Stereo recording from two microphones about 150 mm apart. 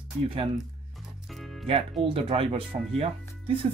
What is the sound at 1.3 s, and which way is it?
Music, centre (ahead or behind).